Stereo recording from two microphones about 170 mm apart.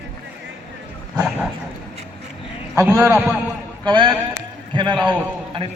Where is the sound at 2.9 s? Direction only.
10° right (ahead or behind).